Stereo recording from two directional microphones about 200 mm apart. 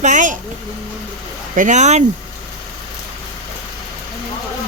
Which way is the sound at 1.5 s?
40° right (ahead or behind).